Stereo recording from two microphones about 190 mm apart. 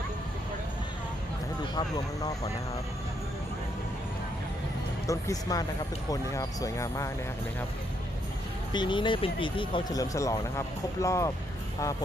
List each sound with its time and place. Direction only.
5.0 s speech: 15° left (ahead or behind)
8.7 s speech: 25° left (ahead or behind)